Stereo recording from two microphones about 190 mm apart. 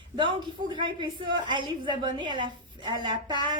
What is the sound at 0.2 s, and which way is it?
A woman's voice, 25° right (ahead or behind).